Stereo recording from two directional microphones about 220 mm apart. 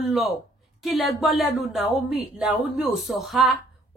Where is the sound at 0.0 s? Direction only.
Centre (ahead or behind).